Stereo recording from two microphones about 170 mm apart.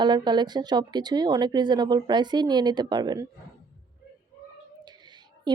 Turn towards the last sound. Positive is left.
turn(degrees=-25)  # may be behind; listen again after turning